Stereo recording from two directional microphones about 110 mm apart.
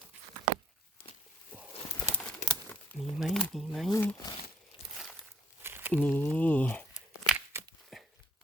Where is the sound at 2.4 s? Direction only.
90° left.